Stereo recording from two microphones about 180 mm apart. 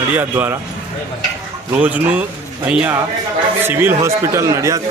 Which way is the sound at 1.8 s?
10° right (ahead or behind).